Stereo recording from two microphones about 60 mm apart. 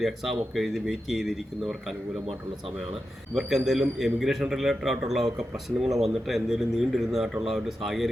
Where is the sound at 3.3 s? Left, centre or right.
Centre.